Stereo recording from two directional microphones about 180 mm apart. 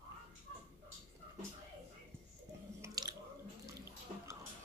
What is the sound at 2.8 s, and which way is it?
Drip, 20° right (ahead or behind).